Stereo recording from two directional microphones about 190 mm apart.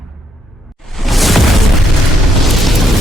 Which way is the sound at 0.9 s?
Centre (ahead or behind).